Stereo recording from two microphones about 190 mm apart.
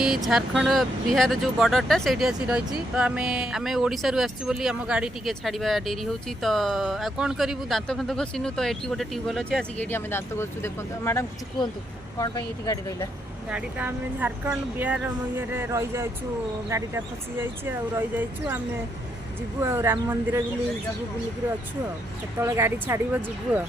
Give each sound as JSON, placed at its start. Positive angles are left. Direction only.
{"t": 0.0, "sound": "speech", "side_deg": 0}
{"t": 13.5, "sound": "speech", "side_deg": -10}
{"t": 19.6, "sound": "speech", "side_deg": -15}
{"t": 22.4, "sound": "speech", "side_deg": -15}